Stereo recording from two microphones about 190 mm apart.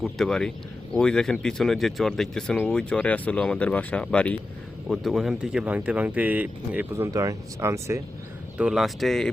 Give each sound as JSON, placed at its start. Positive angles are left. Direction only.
{"t": 0.0, "sound": "speech", "side_deg": 0}
{"t": 8.5, "sound": "speech", "side_deg": -5}